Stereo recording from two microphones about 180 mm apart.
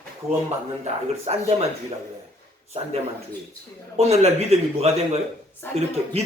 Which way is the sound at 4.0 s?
35° right (ahead or behind).